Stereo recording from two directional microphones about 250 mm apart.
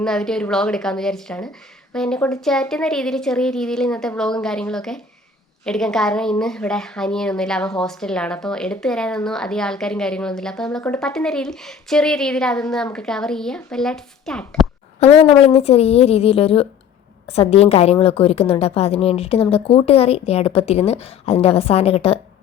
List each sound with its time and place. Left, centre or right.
0.0 s a woman's voice: centre
15.0 s a woman's voice: left